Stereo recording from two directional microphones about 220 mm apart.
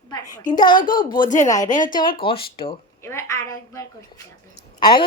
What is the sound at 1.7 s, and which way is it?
Speech, 35° left (ahead or behind).